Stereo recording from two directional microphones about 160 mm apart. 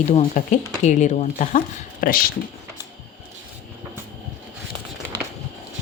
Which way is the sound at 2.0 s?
65° left (ahead or behind).